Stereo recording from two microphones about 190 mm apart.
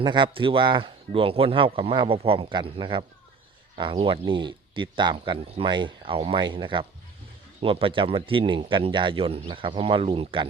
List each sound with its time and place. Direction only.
0.0 s speech: 25° right (ahead or behind)